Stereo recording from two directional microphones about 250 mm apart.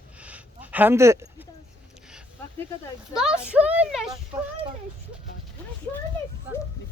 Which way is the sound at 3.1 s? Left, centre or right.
Centre.